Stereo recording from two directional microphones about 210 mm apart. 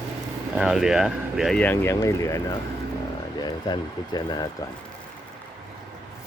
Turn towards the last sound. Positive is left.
turn(degrees=20)  # may be behind; listen again after turning